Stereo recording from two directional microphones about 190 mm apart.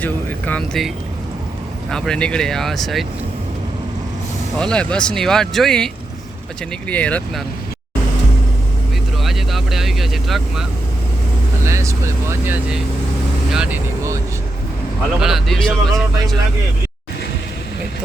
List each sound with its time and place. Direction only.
0.0 s speech: 10° left (ahead or behind)
1.9 s speech: 5° left (ahead or behind)
4.5 s speech: 5° left (ahead or behind)
9.1 s vehicle: centre (ahead or behind)
11.6 s speech: 15° right (ahead or behind)
15.2 s speech: centre (ahead or behind)